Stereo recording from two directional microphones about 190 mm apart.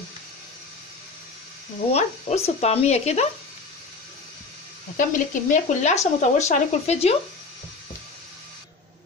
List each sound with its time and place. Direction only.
1.9 s speech: 35° left (ahead or behind)
4.9 s speech: 40° left (ahead or behind)